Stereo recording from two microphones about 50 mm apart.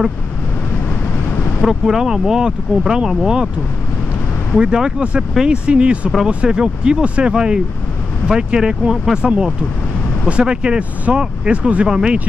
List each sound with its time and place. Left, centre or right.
0.8 s vehicle: left
1.6 s speech: centre
4.6 s speech: centre